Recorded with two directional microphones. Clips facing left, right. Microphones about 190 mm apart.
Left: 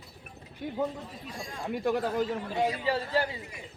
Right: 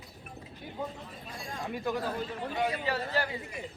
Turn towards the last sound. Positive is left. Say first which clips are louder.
# left 3 dB
turn(degrees=30)  # may be behind; listen again after turning